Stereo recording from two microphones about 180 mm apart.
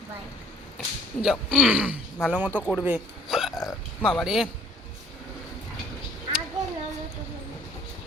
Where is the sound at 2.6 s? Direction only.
10° left (ahead or behind).